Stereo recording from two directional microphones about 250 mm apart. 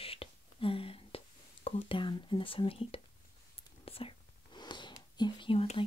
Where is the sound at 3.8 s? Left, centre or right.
Left.